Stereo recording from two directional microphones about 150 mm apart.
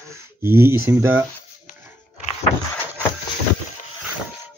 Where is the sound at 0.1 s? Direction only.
15° right (ahead or behind).